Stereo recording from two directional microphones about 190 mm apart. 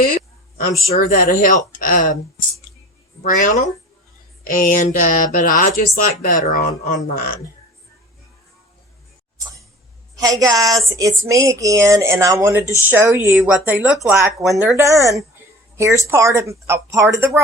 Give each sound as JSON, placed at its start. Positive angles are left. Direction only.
{"t": 1.1, "sound": "speech", "side_deg": 45}
{"t": 3.2, "sound": "speech", "side_deg": 40}
{"t": 10.2, "sound": "speech", "side_deg": -20}
{"t": 14.2, "sound": "speech", "side_deg": -15}
{"t": 14.5, "sound": "speech", "side_deg": 0}
{"t": 14.8, "sound": "speech", "side_deg": -15}